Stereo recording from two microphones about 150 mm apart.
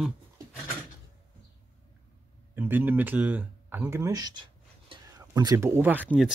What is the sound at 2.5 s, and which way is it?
Speech, 15° right (ahead or behind).